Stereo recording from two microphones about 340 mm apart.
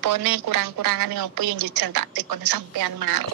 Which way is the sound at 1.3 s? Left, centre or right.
Right.